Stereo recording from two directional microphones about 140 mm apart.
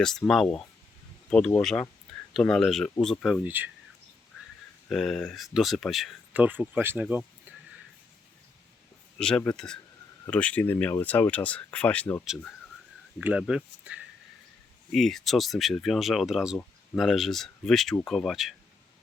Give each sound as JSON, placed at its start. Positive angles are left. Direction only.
{"t": 0.0, "sound": "speech", "side_deg": 5}
{"t": 3.4, "sound": "speech", "side_deg": -15}
{"t": 4.9, "sound": "speech", "side_deg": 0}
{"t": 6.3, "sound": "speech", "side_deg": -10}
{"t": 9.1, "sound": "speech", "side_deg": 5}
{"t": 13.1, "sound": "speech", "side_deg": -5}
{"t": 14.9, "sound": "speech", "side_deg": 0}